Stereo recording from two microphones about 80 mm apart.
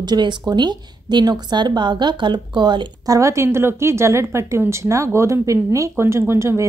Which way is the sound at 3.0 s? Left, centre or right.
Right.